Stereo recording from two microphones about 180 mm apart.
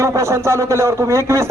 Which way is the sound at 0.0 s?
15° right (ahead or behind).